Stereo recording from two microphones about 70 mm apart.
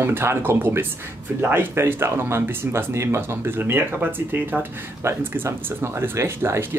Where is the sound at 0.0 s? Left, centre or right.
Right.